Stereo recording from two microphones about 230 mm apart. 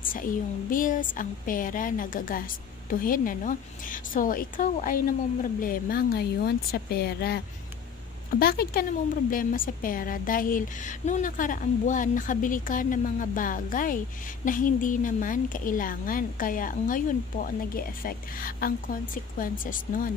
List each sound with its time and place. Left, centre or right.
0.1 s a woman's voice: left